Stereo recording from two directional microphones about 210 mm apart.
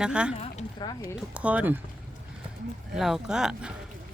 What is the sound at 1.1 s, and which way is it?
Speech, 5° right (ahead or behind).